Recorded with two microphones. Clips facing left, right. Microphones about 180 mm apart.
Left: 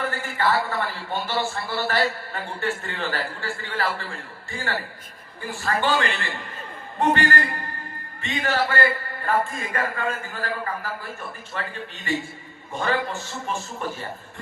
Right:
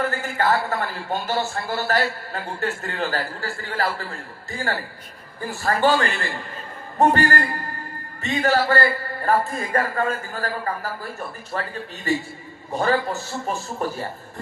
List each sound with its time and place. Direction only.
0.1 s a man's voice: 45° right (ahead or behind)